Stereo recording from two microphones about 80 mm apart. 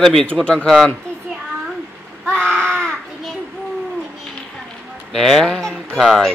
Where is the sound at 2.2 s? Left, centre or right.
Centre.